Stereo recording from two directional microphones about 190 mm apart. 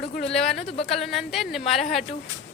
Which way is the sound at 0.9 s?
Centre (ahead or behind).